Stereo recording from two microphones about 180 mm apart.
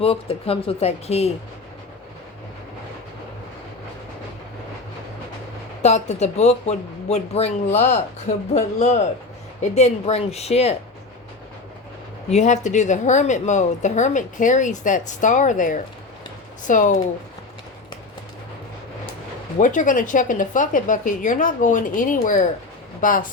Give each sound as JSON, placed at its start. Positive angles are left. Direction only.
{"t": 0.0, "sound": "speech", "side_deg": 30}
{"t": 5.8, "sound": "speech", "side_deg": 40}
{"t": 12.3, "sound": "a woman's voice", "side_deg": 40}
{"t": 19.5, "sound": "a woman's voice", "side_deg": 45}